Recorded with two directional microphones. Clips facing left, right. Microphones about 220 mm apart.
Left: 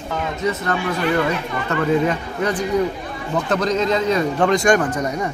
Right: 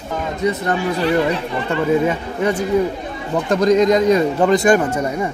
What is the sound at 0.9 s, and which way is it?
Speech, 30° right (ahead or behind).